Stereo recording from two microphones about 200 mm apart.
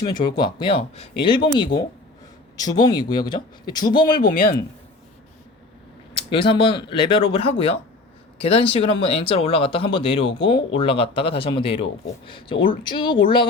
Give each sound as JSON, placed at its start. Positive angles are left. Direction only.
{"t": 0.0, "sound": "speech", "side_deg": 20}
{"t": 4.2, "sound": "speech", "side_deg": 45}
{"t": 6.1, "sound": "speech", "side_deg": 25}